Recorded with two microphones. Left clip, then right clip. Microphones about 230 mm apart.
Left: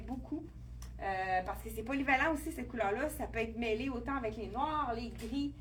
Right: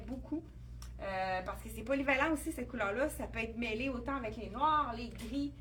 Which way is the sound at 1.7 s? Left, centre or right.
Centre.